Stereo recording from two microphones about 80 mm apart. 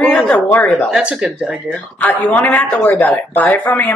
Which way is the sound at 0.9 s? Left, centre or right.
Centre.